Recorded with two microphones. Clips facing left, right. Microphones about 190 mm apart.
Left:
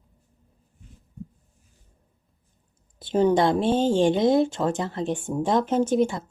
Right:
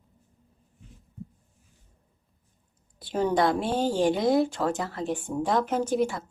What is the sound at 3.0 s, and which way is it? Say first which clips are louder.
Speech: left 4 dB; 25° left (ahead or behind).